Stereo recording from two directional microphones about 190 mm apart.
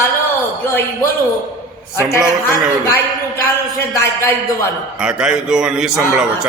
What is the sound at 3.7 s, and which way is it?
Speech, 15° left (ahead or behind).